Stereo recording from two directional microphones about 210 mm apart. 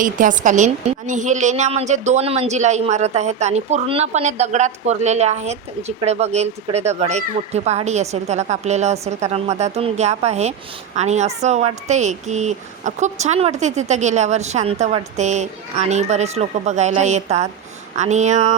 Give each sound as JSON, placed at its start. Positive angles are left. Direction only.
{"t": 0.0, "sound": "speech", "side_deg": -40}